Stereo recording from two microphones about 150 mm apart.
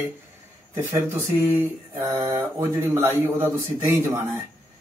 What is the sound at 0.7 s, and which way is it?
Speech, 15° right (ahead or behind).